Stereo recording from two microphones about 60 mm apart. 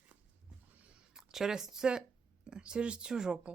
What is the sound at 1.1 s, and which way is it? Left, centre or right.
A woman's voice, centre.